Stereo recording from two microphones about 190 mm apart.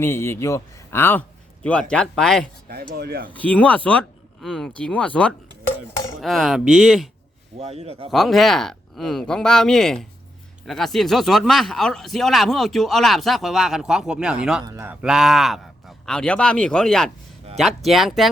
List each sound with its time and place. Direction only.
0.0 s speech: 15° left (ahead or behind)
2.9 s speech: 55° right (ahead or behind)
3.2 s speech: 10° left (ahead or behind)
7.6 s speech: 35° right (ahead or behind)
8.1 s speech: centre (ahead or behind)
14.6 s a man's voice: 15° right (ahead or behind)
15.0 s speech: 5° right (ahead or behind)